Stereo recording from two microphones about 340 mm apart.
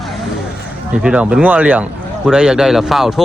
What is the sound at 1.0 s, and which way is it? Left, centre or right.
A man's voice, centre.